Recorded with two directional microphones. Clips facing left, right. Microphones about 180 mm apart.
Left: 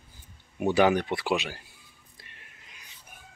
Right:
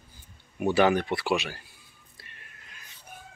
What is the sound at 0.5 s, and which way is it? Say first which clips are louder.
Speech: even; 15° left (ahead or behind).